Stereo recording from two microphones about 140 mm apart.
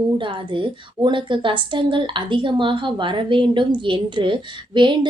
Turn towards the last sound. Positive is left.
turn(degrees=-35)  # may be behind; listen again after turning